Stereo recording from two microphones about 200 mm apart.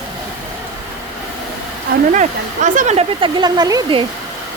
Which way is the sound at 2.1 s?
40° right (ahead or behind).